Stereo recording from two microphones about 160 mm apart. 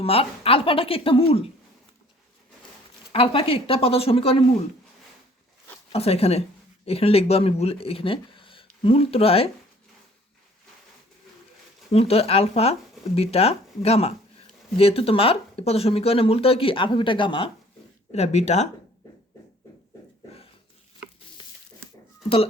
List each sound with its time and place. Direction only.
0.0 s speech: 35° left (ahead or behind)
3.1 s speech: 35° left (ahead or behind)
5.9 s speech: 40° left (ahead or behind)
11.9 s speech: 40° left (ahead or behind)
18.1 s speech: 45° left (ahead or behind)